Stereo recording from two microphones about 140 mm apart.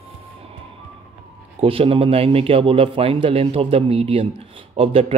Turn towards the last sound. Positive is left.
turn(degrees=-45)  # may be behind; listen again after turning